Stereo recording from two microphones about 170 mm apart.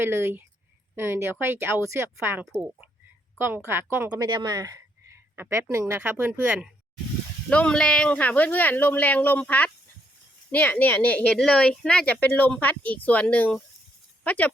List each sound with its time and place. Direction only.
0.0 s a woman's voice: 15° right (ahead or behind)
4.3 s speech: 25° right (ahead or behind); by 6.7 s 5° right (ahead or behind)
7.5 s a woman's voice: 5° left (ahead or behind)